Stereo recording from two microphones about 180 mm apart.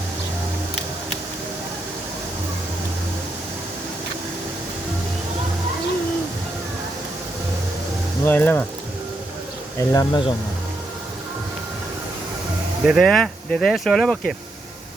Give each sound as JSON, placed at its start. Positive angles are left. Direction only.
{"t": 8.2, "sound": "speech", "side_deg": 10}
{"t": 9.9, "sound": "speech", "side_deg": 15}
{"t": 12.8, "sound": "speech", "side_deg": 0}